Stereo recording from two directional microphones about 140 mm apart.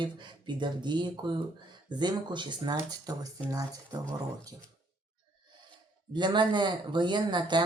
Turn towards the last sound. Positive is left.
turn(degrees=-35)  # may be behind; listen again after turning